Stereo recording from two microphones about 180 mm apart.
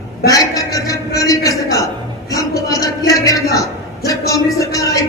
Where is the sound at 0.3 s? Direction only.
20° left (ahead or behind).